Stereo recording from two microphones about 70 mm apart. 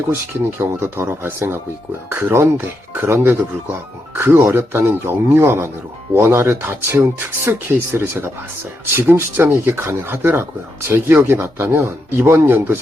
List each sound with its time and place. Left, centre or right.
0.6 s speech: right